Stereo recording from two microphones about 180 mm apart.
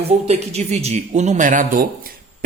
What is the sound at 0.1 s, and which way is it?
Speech, 35° right (ahead or behind).